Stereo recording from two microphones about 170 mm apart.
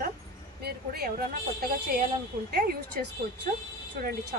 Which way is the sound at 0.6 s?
65° right (ahead or behind).